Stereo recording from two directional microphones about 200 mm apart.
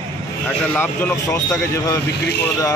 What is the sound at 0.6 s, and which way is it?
Speech, 10° left (ahead or behind).